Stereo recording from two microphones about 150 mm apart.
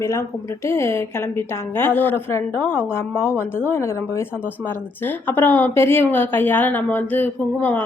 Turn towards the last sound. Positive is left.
turn(degrees=10)  # may be behind; listen again after turning